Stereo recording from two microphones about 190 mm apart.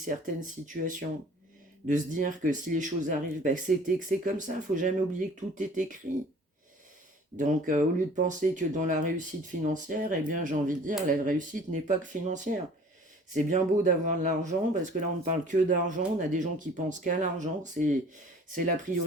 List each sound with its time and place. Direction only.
0.7 s speech: 45° right (ahead or behind)
7.3 s speech: 40° right (ahead or behind)